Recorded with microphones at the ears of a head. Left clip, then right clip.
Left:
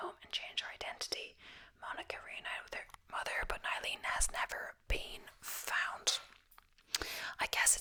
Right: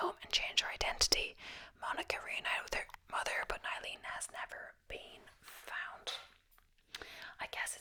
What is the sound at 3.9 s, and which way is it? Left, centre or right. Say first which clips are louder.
Whispering: left 6 dB; left.